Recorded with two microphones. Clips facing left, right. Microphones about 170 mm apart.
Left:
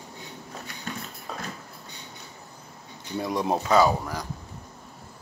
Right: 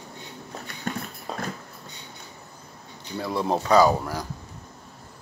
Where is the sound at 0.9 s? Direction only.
50° right (ahead or behind).